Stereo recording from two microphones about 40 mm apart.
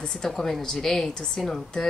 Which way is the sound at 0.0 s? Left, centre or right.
Centre.